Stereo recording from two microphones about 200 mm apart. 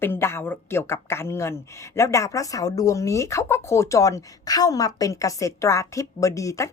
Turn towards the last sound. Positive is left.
turn(degrees=15)  # may be behind; listen again after turning